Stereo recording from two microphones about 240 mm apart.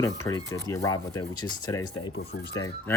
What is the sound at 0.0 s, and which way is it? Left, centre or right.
Speech, centre.